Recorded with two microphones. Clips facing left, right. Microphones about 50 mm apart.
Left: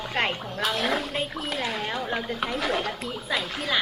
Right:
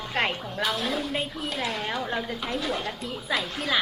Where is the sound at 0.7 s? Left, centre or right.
Left.